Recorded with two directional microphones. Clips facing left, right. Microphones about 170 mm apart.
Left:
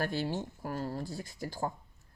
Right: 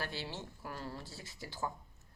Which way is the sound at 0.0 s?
45° left (ahead or behind).